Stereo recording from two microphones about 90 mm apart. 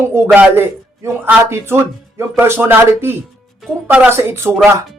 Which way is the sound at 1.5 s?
25° right (ahead or behind).